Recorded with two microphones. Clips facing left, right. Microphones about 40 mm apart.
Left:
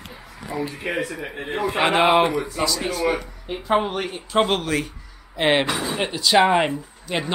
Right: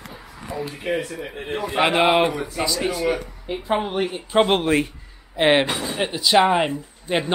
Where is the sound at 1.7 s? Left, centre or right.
Centre.